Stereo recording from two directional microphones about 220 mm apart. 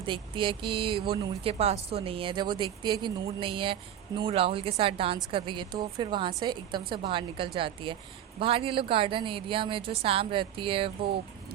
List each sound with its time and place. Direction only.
0.0 s speech: 20° right (ahead or behind)